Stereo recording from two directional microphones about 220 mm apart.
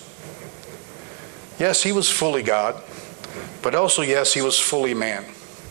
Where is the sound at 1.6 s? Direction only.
15° right (ahead or behind).